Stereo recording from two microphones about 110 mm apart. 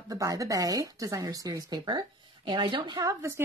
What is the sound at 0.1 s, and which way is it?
Speech, 30° right (ahead or behind).